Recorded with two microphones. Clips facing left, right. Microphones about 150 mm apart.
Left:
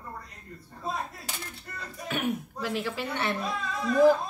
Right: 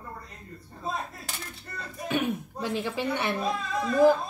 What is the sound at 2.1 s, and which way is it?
Speech, 20° right (ahead or behind).